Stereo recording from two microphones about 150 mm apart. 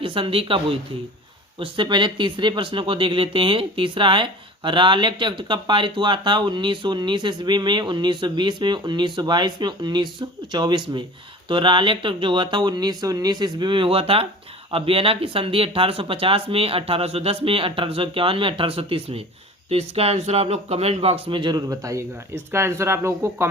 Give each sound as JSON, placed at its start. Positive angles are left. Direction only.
{"t": 0.0, "sound": "speech", "side_deg": -35}